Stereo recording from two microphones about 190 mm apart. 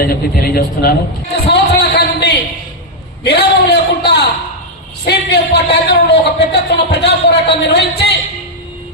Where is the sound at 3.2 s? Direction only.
60° left (ahead or behind).